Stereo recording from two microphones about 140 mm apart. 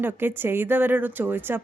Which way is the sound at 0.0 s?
15° right (ahead or behind).